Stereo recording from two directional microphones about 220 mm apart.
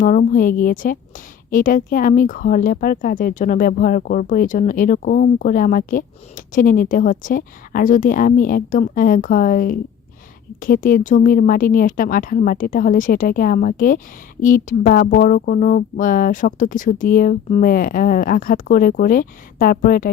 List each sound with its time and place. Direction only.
0.0 s speech: 35° left (ahead or behind)